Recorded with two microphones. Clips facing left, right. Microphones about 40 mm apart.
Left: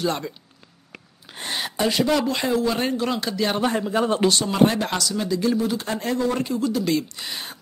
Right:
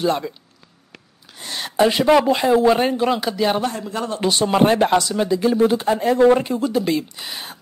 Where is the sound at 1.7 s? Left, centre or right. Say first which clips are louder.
Right 7 dB; right; by 3.6 s centre.